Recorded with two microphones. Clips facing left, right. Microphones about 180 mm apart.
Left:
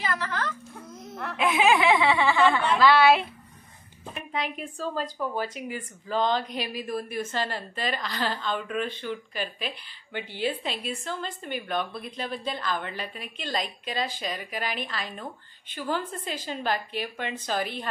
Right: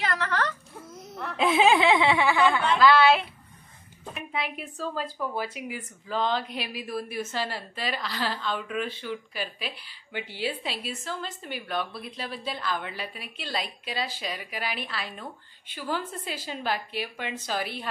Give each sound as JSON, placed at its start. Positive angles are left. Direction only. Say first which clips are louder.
{"t": 0.0, "sound": "whimper", "louder": "right 2 dB", "side_deg": -65}
{"t": 0.9, "sound": "a sound", "louder": "left 1 dB", "side_deg": 0}
{"t": 1.3, "sound": "snicker", "louder": "right 1 dB", "side_deg": -30}
{"t": 2.3, "sound": "a woman's voice", "louder": "left 1 dB", "side_deg": 0}
{"t": 4.1, "sound": "a woman's voice", "louder": "left 1 dB", "side_deg": -5}